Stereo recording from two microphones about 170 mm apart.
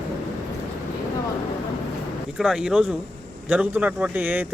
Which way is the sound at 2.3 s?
Centre (ahead or behind).